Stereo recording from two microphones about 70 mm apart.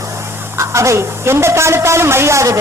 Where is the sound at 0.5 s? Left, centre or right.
Right.